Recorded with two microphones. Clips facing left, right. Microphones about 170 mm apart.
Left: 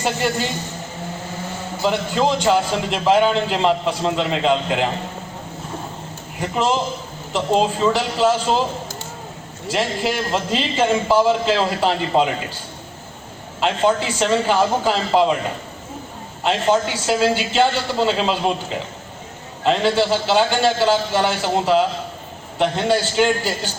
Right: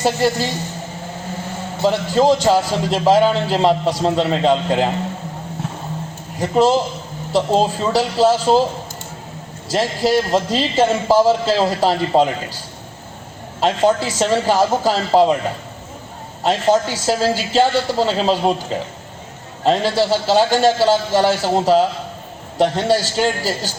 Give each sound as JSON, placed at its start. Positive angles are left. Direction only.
{"t": 0.0, "sound": "a man's voice", "side_deg": -35}
{"t": 1.8, "sound": "a man's voice", "side_deg": -35}
{"t": 6.4, "sound": "a man's voice", "side_deg": -35}
{"t": 9.6, "sound": "a man's voice", "side_deg": -40}
{"t": 13.6, "sound": "a man's voice", "side_deg": -40}
{"t": 16.4, "sound": "a man's voice", "side_deg": -40}
{"t": 19.6, "sound": "a man's voice", "side_deg": -40}